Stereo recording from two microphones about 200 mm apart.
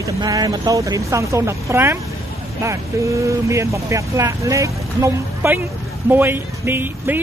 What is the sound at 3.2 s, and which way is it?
Speech, 15° right (ahead or behind).